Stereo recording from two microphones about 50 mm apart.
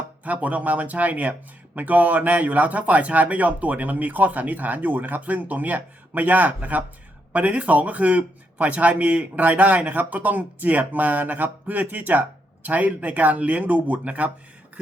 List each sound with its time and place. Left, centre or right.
0.3 s speech: right